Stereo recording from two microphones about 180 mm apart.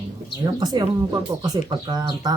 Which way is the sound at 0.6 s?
25° right (ahead or behind).